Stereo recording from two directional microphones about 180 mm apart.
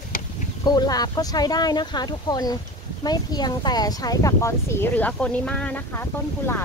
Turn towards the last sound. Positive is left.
turn(degrees=10)  # may be behind; listen again after turning